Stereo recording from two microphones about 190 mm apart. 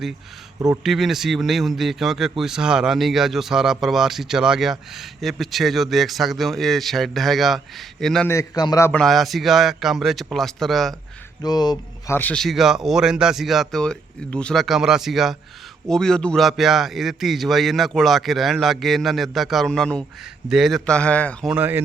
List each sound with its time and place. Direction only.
0.8 s speech: centre (ahead or behind)
8.3 s a man's voice: 20° left (ahead or behind)
9.0 s speech: centre (ahead or behind)
11.4 s speech: 20° left (ahead or behind); by 21.5 s 5° left (ahead or behind)
21.5 s speech: 10° right (ahead or behind)